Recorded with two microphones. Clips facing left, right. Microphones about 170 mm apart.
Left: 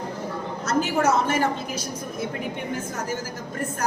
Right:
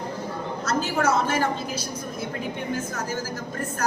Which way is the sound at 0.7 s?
20° left (ahead or behind).